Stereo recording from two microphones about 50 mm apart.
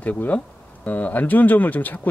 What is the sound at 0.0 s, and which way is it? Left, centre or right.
Speech, left.